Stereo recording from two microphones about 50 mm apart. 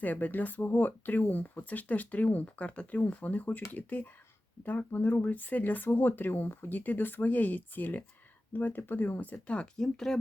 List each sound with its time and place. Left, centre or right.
0.0 s speech: left
9.7 s speech: centre